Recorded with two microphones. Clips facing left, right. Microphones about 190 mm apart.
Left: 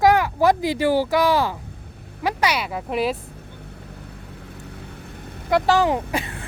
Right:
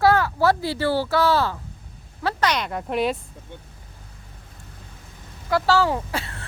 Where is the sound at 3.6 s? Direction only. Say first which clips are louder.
Left 10 dB; 70° left (ahead or behind).